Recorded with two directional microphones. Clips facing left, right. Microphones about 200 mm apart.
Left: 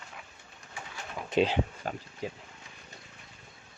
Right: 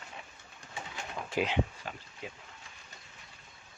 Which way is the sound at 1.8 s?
45° left (ahead or behind).